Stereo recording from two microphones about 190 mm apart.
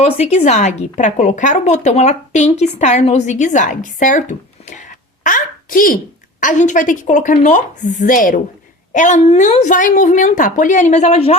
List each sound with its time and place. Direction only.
0.0 s speech: 35° left (ahead or behind)
5.2 s a sound: 45° left (ahead or behind)
6.4 s speech: 40° left (ahead or behind)